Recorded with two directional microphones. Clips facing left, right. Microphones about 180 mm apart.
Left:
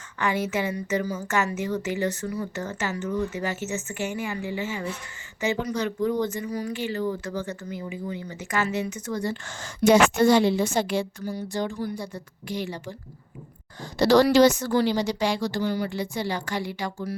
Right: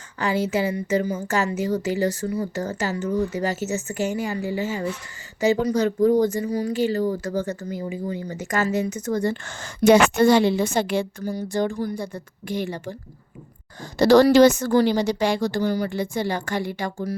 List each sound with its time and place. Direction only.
0.2 s a woman's voice: 30° right (ahead or behind); by 13.0 s 50° right (ahead or behind)
14.0 s a woman's voice: 45° right (ahead or behind)